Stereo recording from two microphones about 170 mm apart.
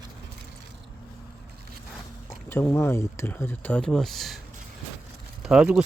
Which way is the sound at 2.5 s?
15° left (ahead or behind).